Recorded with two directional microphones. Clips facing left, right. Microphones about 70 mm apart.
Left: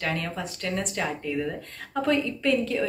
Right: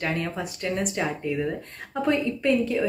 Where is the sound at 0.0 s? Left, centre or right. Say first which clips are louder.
Right 2 dB; right.